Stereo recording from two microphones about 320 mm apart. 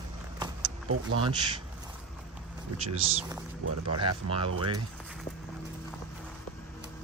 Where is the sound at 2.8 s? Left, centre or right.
Centre.